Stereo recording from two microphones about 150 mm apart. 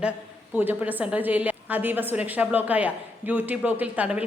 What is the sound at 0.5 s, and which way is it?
A woman's voice, 10° right (ahead or behind).